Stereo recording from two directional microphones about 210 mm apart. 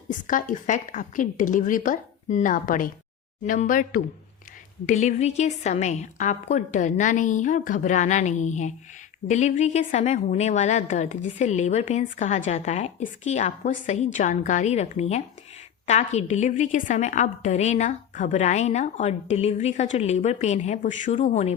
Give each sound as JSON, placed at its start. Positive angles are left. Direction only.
{"t": 0.1, "sound": "a woman's voice", "side_deg": 40}